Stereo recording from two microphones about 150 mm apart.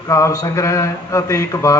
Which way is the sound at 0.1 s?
20° left (ahead or behind).